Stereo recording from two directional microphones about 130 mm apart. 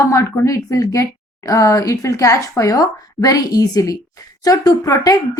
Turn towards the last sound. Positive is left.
turn(degrees=25)  # may be behind; listen again after turning